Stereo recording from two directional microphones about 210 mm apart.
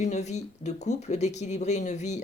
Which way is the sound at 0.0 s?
35° left (ahead or behind).